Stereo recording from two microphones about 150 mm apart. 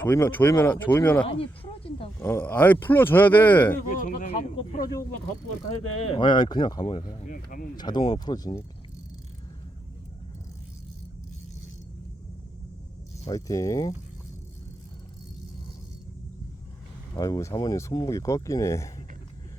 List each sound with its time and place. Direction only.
0.0 s speech: 15° left (ahead or behind)
1.2 s speech: 35° left (ahead or behind)
2.1 s speech: 15° left (ahead or behind)
3.8 s a sound: 60° left (ahead or behind)
4.8 s speech: 25° left (ahead or behind)
6.0 s speech: 35° left (ahead or behind)
7.3 s speech: 65° left (ahead or behind)
7.8 s speech: 30° left (ahead or behind)
13.2 s speech: 20° left (ahead or behind)
17.2 s speech: 20° left (ahead or behind)